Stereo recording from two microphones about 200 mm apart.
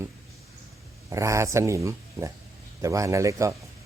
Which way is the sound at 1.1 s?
15° right (ahead or behind).